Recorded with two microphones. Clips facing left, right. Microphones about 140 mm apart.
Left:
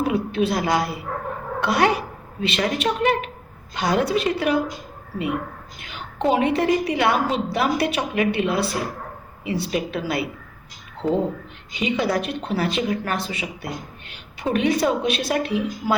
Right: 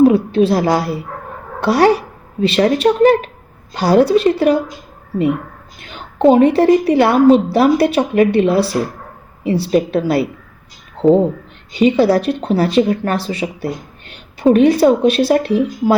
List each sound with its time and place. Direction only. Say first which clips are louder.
0.0 s a sound: right 11 dB; 30° right (ahead or behind)
1.6 s a woman's voice: right 8 dB; 35° right (ahead or behind)
5.9 s a woman's voice: right 10 dB; 35° right (ahead or behind)
11.0 s speech: right 11 dB; 50° right (ahead or behind)
11.7 s a woman's voice: right 11 dB; 35° right (ahead or behind)